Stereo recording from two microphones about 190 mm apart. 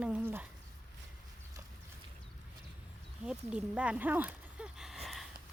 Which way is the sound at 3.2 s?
5° right (ahead or behind).